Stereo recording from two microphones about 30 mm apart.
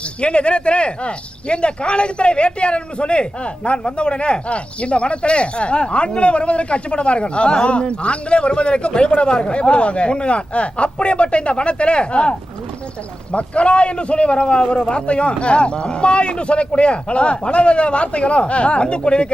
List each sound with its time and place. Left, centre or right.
0.2 s speech: left